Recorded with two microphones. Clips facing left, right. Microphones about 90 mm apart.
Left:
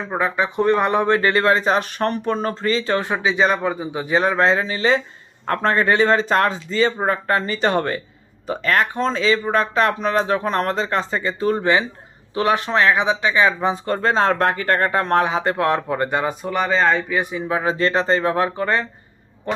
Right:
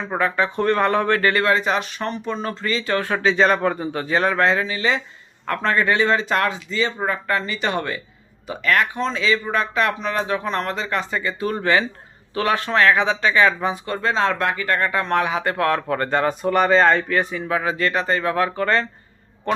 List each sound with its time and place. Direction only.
0.0 s speech: 15° left (ahead or behind); by 1.9 s 35° left (ahead or behind)
2.0 s speech: 50° left (ahead or behind)
2.5 s speech: 35° left (ahead or behind)
3.1 s a man's voice: 10° left (ahead or behind)
4.0 s speech: 20° left (ahead or behind)
13.8 s speech: 40° left (ahead or behind); by 16.3 s 10° left (ahead or behind)
16.4 s speech: centre (ahead or behind)
17.5 s speech: 30° left (ahead or behind)